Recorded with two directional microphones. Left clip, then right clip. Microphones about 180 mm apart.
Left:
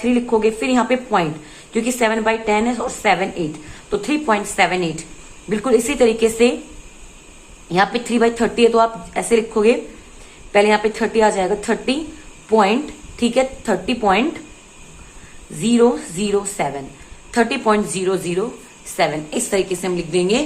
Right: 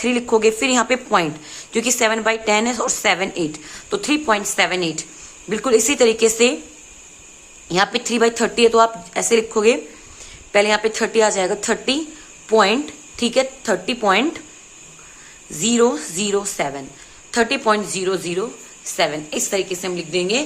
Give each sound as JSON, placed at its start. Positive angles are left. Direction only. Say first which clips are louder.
{"t": 0.0, "sound": "speech", "louder": "right 1 dB", "side_deg": -30}
{"t": 7.7, "sound": "speech", "louder": "left 1 dB", "side_deg": -25}
{"t": 15.6, "sound": "a woman's voice", "louder": "left 2 dB", "side_deg": -25}